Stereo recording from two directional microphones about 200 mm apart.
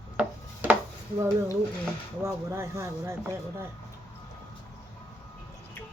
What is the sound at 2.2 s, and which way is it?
Speech, 15° right (ahead or behind).